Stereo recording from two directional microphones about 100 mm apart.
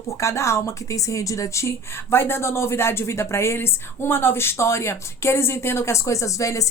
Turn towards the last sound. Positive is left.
turn(degrees=30)  # may be behind; listen again after turning